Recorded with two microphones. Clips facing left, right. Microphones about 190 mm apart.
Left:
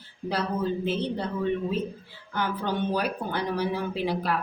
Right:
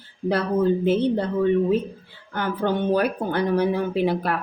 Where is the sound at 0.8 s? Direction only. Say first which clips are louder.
Right 8 dB; 55° right (ahead or behind).